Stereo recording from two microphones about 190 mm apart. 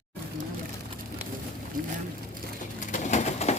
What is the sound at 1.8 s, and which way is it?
Boat, 45° right (ahead or behind).